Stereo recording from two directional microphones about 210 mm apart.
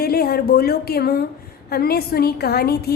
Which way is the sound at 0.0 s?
50° left (ahead or behind).